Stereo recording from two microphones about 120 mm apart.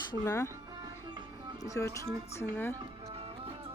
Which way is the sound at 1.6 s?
25° left (ahead or behind).